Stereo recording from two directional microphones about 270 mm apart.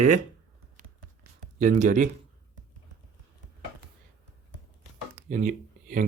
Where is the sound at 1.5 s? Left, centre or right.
Right.